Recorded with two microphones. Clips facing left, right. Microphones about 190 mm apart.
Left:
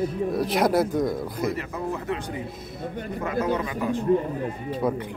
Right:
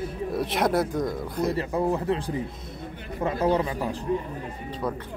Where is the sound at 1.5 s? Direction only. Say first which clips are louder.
Right 5 dB; 30° right (ahead or behind).